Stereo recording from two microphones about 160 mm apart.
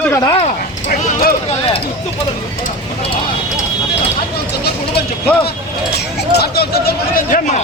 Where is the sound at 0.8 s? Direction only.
65° left (ahead or behind).